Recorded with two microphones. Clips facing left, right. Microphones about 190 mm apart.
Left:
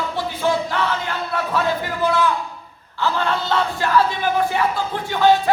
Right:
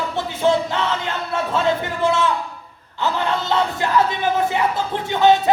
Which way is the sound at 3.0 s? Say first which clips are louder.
Even; 20° right (ahead or behind).